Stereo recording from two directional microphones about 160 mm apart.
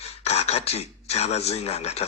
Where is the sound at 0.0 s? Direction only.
40° left (ahead or behind).